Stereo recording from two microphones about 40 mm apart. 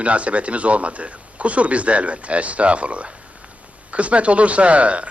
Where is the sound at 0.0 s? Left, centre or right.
Right.